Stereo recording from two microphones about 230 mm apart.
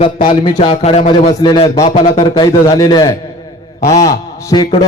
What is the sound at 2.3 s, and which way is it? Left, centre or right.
A man's voice, centre.